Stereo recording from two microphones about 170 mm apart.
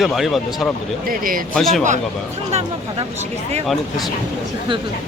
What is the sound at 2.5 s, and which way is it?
Speech, 40° right (ahead or behind).